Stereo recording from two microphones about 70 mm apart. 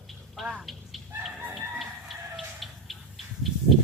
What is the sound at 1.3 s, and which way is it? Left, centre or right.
Fowl, right.